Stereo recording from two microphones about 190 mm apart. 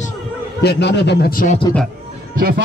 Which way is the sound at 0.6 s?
65° left (ahead or behind).